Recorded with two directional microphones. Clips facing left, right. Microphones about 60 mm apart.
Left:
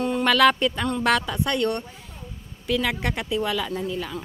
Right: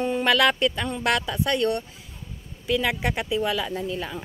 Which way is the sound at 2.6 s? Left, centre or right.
Centre.